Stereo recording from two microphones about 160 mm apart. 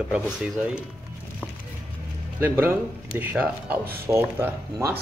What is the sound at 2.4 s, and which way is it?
Speech, 10° right (ahead or behind).